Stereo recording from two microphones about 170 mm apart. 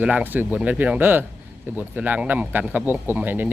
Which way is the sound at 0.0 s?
10° right (ahead or behind).